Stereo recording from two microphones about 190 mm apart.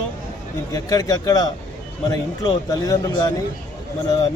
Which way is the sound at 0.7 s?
20° left (ahead or behind).